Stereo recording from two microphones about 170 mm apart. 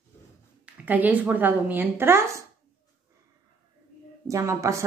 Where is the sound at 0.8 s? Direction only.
10° right (ahead or behind).